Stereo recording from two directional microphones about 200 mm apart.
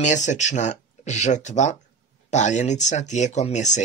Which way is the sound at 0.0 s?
35° left (ahead or behind).